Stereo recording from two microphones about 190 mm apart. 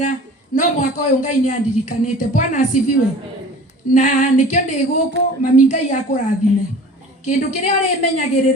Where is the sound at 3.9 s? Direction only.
40° left (ahead or behind).